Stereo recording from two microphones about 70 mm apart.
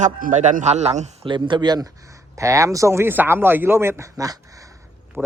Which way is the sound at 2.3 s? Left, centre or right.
Right.